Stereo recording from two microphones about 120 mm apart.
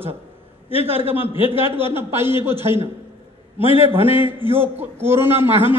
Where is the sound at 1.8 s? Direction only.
20° right (ahead or behind).